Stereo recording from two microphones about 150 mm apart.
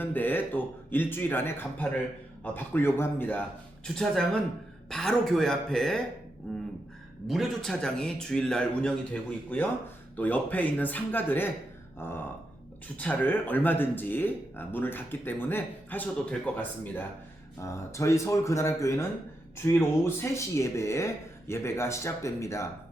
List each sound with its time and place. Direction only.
0.0 s speech: 10° left (ahead or behind)
3.8 s a man's voice: centre (ahead or behind)
7.3 s a man's voice: centre (ahead or behind); by 22.6 s 20° left (ahead or behind)